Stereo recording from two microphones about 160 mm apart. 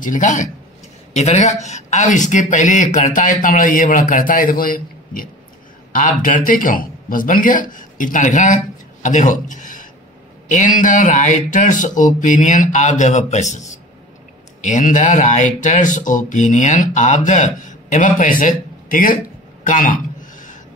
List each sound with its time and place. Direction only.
0.0 s a man's voice: 55° left (ahead or behind)